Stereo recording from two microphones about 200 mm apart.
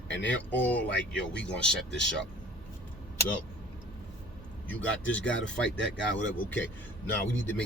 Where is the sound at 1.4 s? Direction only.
5° left (ahead or behind).